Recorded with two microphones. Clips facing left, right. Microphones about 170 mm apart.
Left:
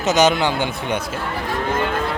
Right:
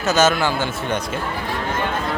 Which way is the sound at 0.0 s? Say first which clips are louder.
Left 1 dB; 20° left (ahead or behind).